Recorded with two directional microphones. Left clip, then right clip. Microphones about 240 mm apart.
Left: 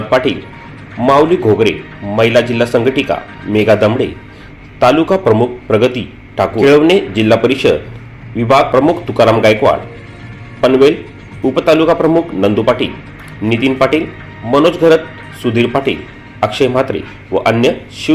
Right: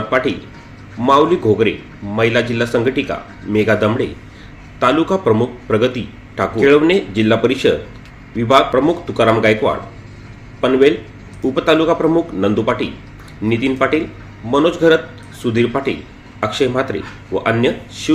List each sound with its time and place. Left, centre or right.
1.0 s a man's voice: centre